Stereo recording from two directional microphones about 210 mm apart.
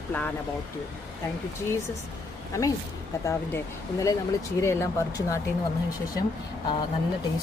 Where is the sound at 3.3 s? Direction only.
15° left (ahead or behind).